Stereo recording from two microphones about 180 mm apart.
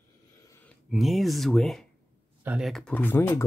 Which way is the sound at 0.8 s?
Centre (ahead or behind).